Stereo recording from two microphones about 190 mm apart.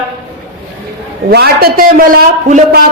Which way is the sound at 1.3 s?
55° right (ahead or behind).